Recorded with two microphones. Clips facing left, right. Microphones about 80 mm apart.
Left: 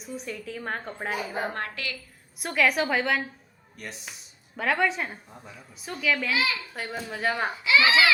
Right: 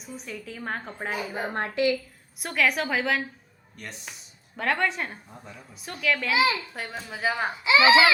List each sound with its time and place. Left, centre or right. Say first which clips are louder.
0.0 s speech: left 3 dB; centre
1.5 s speech: right 9 dB; right
2.4 s speech: left 1 dB; centre
6.3 s speech: right 4 dB; right
6.7 s speech: left 2 dB; centre
7.5 s speech: right 5 dB; right